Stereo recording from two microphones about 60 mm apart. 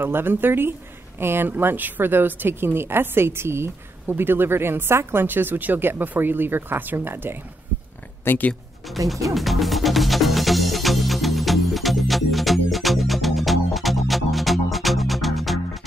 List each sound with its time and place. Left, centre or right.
0.0 s speech: right
8.2 s speech: left
9.0 s speech: right
9.3 s music: centre